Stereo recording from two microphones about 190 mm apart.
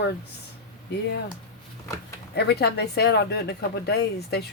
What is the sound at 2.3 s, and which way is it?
Speech, 60° left (ahead or behind).